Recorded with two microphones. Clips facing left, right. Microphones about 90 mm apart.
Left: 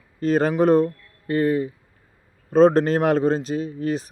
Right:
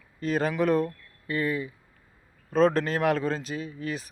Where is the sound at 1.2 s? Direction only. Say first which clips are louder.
Left 8 dB; 40° left (ahead or behind).